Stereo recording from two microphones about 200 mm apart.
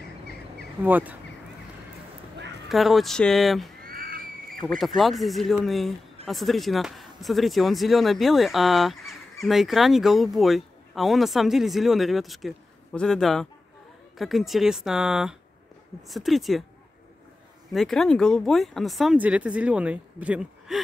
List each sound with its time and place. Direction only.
0.8 s speech: 10° right (ahead or behind)
2.7 s speech: centre (ahead or behind)
3.8 s a sound: 45° right (ahead or behind)
4.5 s speech: centre (ahead or behind)
17.7 s speech: centre (ahead or behind)